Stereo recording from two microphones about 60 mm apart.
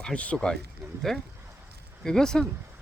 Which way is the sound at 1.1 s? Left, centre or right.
Centre.